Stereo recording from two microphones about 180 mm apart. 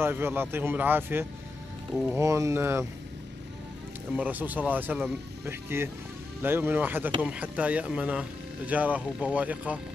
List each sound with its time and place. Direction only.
0.0 s speech: 10° right (ahead or behind)
4.2 s speech: 10° right (ahead or behind)